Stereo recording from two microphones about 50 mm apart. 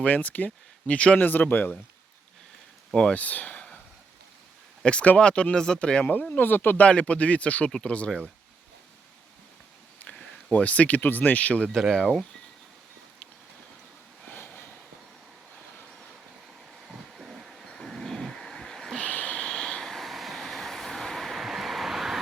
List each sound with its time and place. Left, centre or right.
0.0 s speech: left
1.2 s speech: left
2.9 s speech: centre
3.2 s a sound: left
4.8 s speech: left
6.1 s speech: left
6.7 s speech: left
10.5 s speech: left
11.7 s speech: centre
14.3 s a sound: left
16.8 s vehicle: centre
18.9 s a sound: left
19.4 s vehicle: centre